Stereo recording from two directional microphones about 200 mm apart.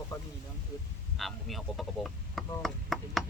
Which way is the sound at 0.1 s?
15° left (ahead or behind).